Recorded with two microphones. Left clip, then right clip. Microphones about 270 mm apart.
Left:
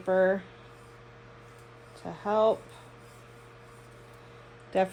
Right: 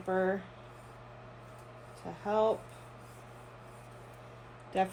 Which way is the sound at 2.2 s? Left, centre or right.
Left.